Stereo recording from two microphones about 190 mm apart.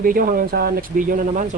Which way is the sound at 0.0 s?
45° right (ahead or behind).